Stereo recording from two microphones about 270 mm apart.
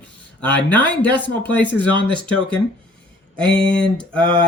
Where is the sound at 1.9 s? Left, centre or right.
Centre.